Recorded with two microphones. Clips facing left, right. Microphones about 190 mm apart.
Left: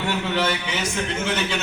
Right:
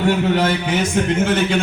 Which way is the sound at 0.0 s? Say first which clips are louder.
Right 7 dB; 45° right (ahead or behind).